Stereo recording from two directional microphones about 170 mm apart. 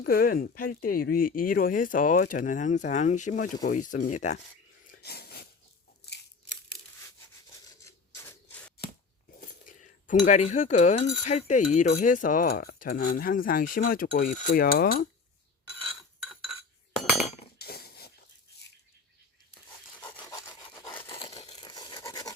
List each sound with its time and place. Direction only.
0.0 s speech: 60° left (ahead or behind); by 4.4 s 45° left (ahead or behind)
4.9 s wheeze: 70° left (ahead or behind)
7.9 s scissors: 15° left (ahead or behind)
9.4 s a sound: 50° left (ahead or behind)
11.9 s speech: 50° left (ahead or behind)
17.6 s cutlery: 65° left (ahead or behind)
20.0 s rub: 10° left (ahead or behind)
20.2 s sawing: 20° left (ahead or behind)
20.9 s a sound: 10° left (ahead or behind)
21.2 s a sound: 35° left (ahead or behind)
21.5 s scratch: 25° left (ahead or behind)